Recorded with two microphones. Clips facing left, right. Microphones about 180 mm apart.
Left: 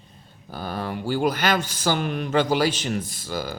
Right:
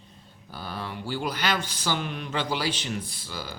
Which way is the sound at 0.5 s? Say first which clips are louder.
Left 6 dB; 45° left (ahead or behind).